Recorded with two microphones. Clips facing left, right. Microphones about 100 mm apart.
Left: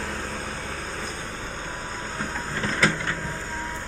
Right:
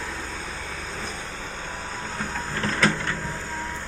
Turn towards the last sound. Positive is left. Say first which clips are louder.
# right 1 dB
turn(degrees=20)  # may be behind; listen again after turning